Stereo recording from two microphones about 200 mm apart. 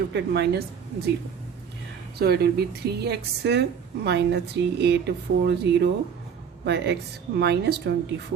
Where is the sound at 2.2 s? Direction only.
55° right (ahead or behind).